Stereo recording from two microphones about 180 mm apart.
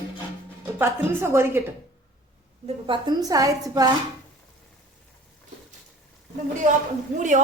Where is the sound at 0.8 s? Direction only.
15° right (ahead or behind).